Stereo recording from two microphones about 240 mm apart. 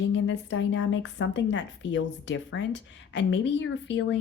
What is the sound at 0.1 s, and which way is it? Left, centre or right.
Speech, left.